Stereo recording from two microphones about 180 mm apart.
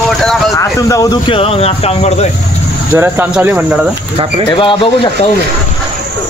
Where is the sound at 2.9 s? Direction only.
10° right (ahead or behind).